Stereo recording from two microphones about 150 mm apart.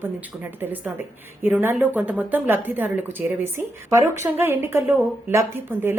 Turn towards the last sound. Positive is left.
turn(degrees=-15)  # may be behind; listen again after turning